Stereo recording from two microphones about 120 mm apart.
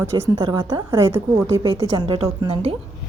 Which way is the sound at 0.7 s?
25° right (ahead or behind).